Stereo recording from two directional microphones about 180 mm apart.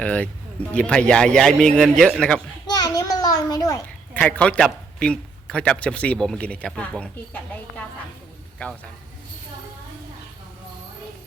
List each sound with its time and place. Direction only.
0.0 s a man's voice: 5° left (ahead or behind)
2.6 s a sound: 20° left (ahead or behind)
4.2 s speech: 5° left (ahead or behind)